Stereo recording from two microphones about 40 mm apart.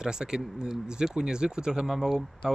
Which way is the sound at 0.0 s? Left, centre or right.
Centre.